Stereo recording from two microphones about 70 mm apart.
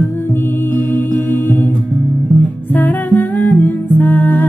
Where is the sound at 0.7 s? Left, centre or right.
Left.